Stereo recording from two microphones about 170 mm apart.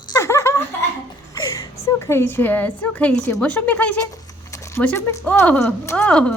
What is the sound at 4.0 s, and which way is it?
A woman's voice, 20° left (ahead or behind).